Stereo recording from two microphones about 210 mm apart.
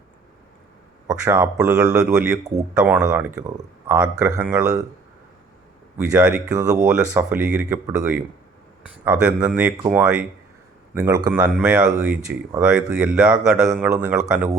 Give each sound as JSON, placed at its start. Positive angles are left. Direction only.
{"t": 1.2, "sound": "speech", "side_deg": -5}
{"t": 2.4, "sound": "speech", "side_deg": -15}
{"t": 2.7, "sound": "speech", "side_deg": -5}
{"t": 6.1, "sound": "speech", "side_deg": -5}
{"t": 6.4, "sound": "speech", "side_deg": -15}
{"t": 6.7, "sound": "speech", "side_deg": -5}
{"t": 10.9, "sound": "speech", "side_deg": -15}